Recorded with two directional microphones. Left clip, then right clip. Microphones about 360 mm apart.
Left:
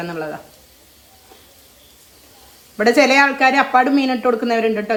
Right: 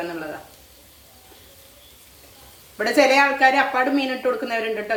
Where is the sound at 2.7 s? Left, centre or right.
Left.